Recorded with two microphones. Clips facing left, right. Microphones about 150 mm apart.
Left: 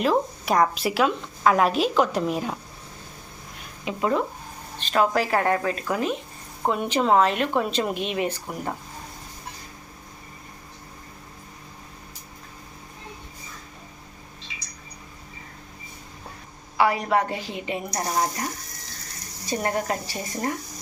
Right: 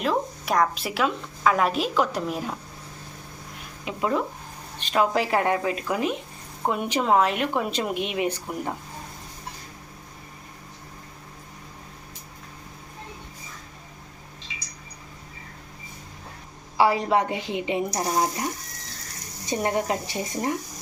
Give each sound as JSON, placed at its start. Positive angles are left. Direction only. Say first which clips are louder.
{"t": 0.0, "sound": "a woman's voice", "louder": "left 3 dB", "side_deg": 0}
{"t": 3.8, "sound": "a woman's voice", "louder": "left 1 dB", "side_deg": -5}
{"t": 4.8, "sound": "a woman's voice", "louder": "left 1 dB", "side_deg": -15}
{"t": 16.7, "sound": "a woman's voice", "louder": "right 1 dB", "side_deg": -30}
{"t": 18.1, "sound": "a woman's voice", "louder": "left 1 dB", "side_deg": -10}
{"t": 19.5, "sound": "a woman's voice", "louder": "right 1 dB", "side_deg": -20}